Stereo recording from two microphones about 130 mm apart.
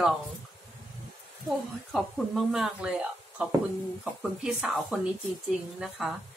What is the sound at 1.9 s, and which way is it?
A woman's voice, centre (ahead or behind).